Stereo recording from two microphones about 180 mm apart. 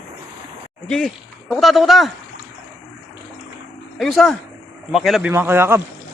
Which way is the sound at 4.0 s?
Centre (ahead or behind).